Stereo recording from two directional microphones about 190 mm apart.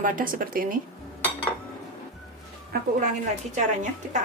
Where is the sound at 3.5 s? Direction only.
40° right (ahead or behind).